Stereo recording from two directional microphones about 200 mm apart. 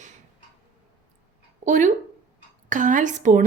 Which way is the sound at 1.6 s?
40° right (ahead or behind).